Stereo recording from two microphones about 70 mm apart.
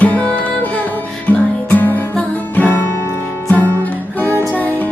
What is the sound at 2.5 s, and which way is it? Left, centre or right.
Guitar, left.